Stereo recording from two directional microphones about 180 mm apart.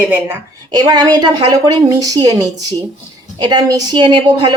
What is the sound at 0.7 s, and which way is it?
A woman's voice, 20° right (ahead or behind).